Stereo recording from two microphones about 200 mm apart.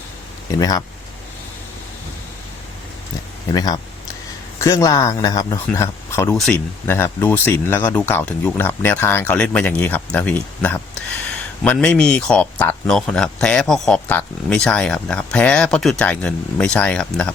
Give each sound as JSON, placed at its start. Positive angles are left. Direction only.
{"t": 0.6, "sound": "speech", "side_deg": 20}
{"t": 3.5, "sound": "speech", "side_deg": 20}